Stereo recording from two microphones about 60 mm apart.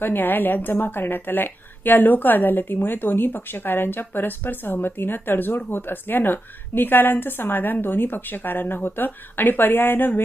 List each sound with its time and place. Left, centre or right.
0.0 s a woman's voice: left